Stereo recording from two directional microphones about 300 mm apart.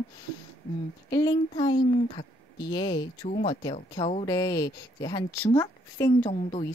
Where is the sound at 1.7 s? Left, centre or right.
Left.